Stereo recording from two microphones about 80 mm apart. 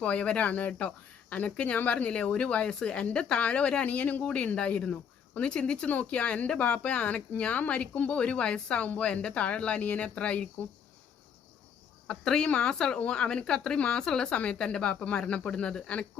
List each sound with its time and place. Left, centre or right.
0.0 s speech: centre
12.0 s speech: centre